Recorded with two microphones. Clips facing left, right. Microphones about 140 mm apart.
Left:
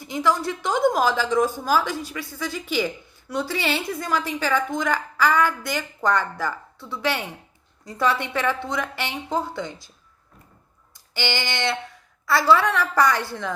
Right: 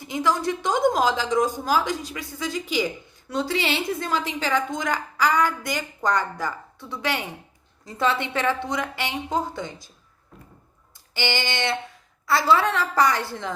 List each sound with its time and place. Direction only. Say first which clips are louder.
0.0 s a woman's voice: left 1 dB; 20° right (ahead or behind)
11.2 s a woman's voice: even; 20° right (ahead or behind)